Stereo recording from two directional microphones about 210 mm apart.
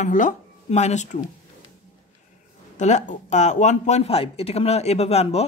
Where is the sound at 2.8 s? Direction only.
35° left (ahead or behind).